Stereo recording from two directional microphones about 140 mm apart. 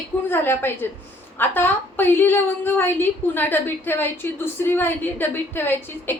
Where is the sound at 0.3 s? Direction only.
15° left (ahead or behind).